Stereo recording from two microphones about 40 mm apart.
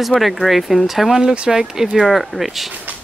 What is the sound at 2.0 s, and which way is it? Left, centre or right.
Speech, centre.